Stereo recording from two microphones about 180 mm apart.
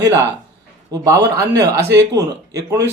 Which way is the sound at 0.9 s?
20° right (ahead or behind).